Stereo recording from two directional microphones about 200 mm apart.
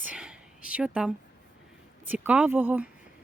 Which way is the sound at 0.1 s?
5° right (ahead or behind).